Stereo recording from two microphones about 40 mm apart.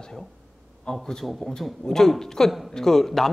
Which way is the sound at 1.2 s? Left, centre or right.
Centre.